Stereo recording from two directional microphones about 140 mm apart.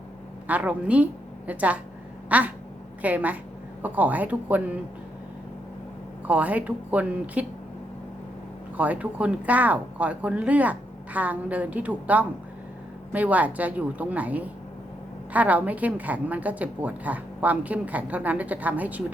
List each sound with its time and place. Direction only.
0.4 s a woman's voice: 10° right (ahead or behind)
6.2 s a woman's voice: 10° right (ahead or behind)
8.8 s a woman's voice: 10° right (ahead or behind)